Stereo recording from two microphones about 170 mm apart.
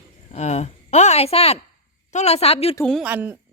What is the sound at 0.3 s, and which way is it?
A woman's voice, 40° left (ahead or behind).